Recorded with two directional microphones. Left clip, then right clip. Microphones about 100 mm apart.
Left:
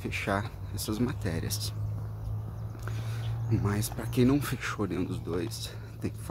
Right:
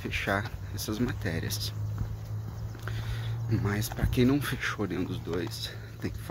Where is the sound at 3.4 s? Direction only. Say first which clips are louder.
Even; 25° left (ahead or behind).